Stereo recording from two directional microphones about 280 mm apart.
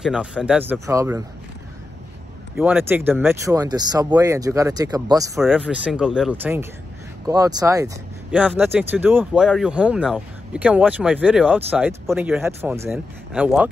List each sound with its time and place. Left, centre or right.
0.0 s speech: centre
2.5 s speech: centre
5.4 s speech: centre